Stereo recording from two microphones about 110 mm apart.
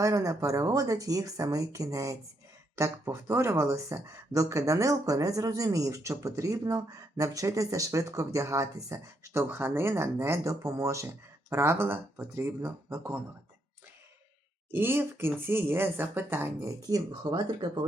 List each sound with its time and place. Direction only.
0.0 s speech: 30° right (ahead or behind)
14.7 s speech: 20° right (ahead or behind); by 17.8 s 40° right (ahead or behind)